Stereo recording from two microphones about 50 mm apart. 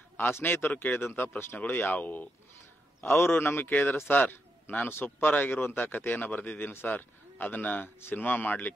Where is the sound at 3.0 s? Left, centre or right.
Left.